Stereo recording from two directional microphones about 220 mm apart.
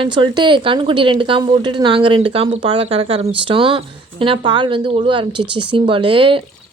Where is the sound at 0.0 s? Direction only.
20° right (ahead or behind).